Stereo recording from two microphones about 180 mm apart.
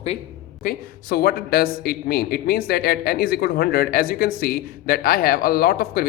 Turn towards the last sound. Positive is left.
turn(degrees=55)  # may be behind; listen again after turning